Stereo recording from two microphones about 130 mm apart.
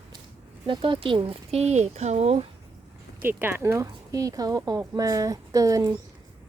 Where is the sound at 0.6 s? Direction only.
40° right (ahead or behind).